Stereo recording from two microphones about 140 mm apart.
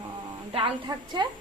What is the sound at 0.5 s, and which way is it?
Speech, 35° right (ahead or behind).